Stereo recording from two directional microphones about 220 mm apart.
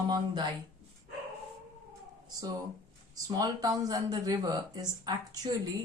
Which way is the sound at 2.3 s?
15° right (ahead or behind).